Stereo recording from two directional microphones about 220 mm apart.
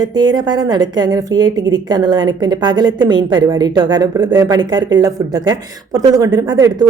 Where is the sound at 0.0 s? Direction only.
20° right (ahead or behind).